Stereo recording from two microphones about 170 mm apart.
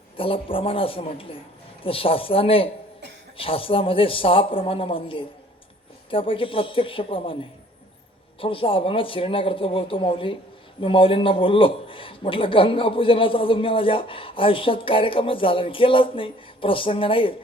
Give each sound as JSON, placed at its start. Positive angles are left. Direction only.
{"t": 0.2, "sound": "a man's voice", "side_deg": 30}
{"t": 8.4, "sound": "a man's voice", "side_deg": 30}